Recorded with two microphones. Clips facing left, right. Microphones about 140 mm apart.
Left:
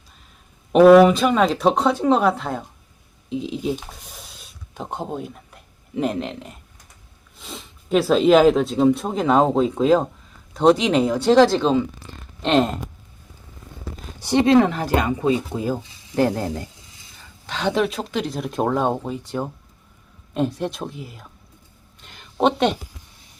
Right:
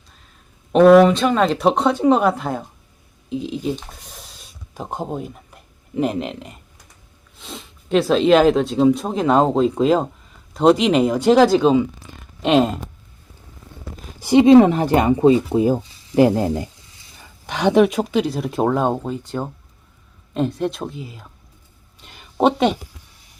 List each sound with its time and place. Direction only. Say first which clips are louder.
0.7 s speech: even; centre (ahead or behind)
14.3 s speech: right 5 dB; 15° right (ahead or behind); by 21.2 s centre (ahead or behind)
22.0 s a sound: right 2 dB; 5° right (ahead or behind)